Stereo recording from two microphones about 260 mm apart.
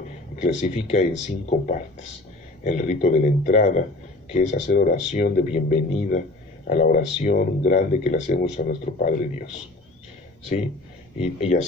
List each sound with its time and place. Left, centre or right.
0.4 s speech: left
11.1 s speech: left